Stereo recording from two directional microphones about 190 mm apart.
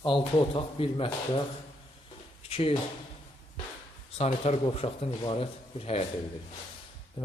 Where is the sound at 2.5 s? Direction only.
30° left (ahead or behind).